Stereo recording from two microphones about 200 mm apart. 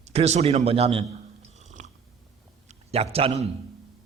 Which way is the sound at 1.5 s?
35° right (ahead or behind).